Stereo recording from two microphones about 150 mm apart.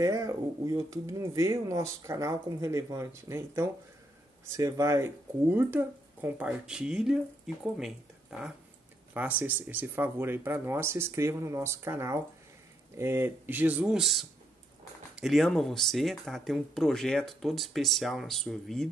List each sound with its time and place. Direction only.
0.0 s speech: 20° right (ahead or behind); by 18.9 s centre (ahead or behind)